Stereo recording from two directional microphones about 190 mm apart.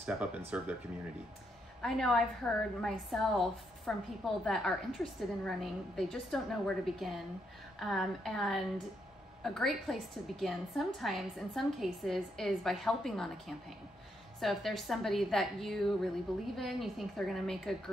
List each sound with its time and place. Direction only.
0.0 s speech: 5° right (ahead or behind)
1.8 s a woman's voice: centre (ahead or behind)